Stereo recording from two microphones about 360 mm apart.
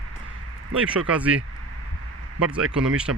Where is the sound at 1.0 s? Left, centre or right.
Centre.